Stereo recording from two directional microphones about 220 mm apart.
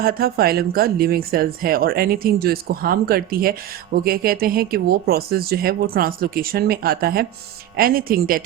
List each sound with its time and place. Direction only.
0.0 s speech: 40° right (ahead or behind)